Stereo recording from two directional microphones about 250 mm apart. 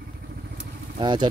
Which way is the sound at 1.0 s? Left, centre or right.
Centre.